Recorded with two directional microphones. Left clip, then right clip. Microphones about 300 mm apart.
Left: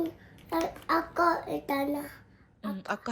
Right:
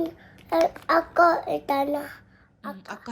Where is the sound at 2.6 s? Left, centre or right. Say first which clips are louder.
Left 2 dB; centre.